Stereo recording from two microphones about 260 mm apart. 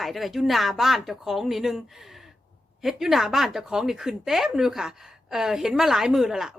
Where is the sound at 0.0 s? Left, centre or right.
Centre.